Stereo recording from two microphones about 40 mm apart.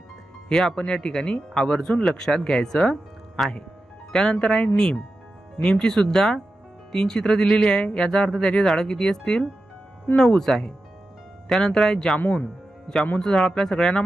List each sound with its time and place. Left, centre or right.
0.5 s speech: centre
3.4 s speech: centre
4.1 s speech: centre
12.2 s speech: left
13.2 s speech: centre